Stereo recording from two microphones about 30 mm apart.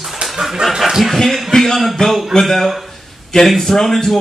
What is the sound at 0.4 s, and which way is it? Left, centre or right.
Speech, centre.